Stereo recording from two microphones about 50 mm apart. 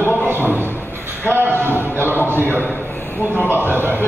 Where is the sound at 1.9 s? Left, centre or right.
Right.